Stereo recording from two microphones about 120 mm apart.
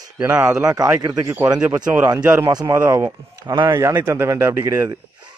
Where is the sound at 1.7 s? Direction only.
15° right (ahead or behind).